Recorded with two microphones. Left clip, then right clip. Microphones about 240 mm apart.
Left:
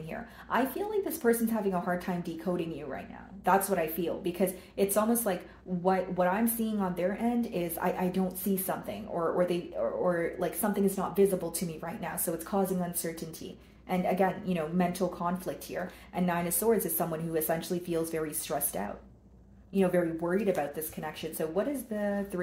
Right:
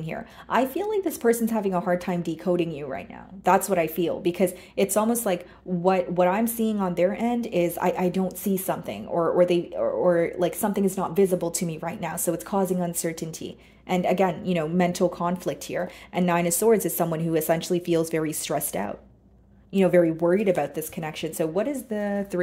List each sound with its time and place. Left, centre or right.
0.1 s speech: right